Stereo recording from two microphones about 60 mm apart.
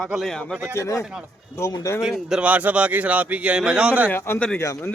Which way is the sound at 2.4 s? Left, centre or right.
Right.